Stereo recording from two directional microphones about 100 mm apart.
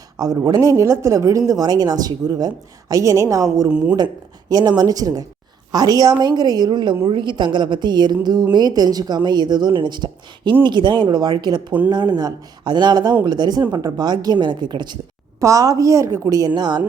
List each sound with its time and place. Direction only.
0.2 s speech: 35° right (ahead or behind)
3.7 s speech: 10° right (ahead or behind)
3.9 s speech: 40° right (ahead or behind)
15.4 s speech: 30° right (ahead or behind)
16.6 s speech: 45° right (ahead or behind)